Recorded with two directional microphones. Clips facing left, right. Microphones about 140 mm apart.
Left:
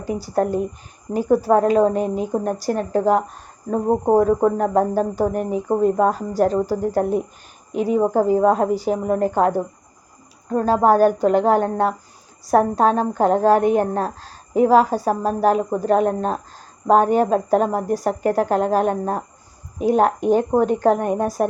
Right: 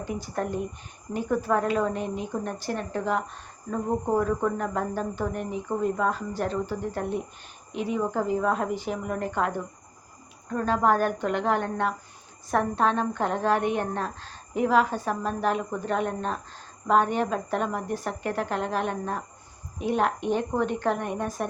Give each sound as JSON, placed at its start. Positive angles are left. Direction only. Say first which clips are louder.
{"t": 0.1, "sound": "a woman's voice", "louder": "left 10 dB", "side_deg": 35}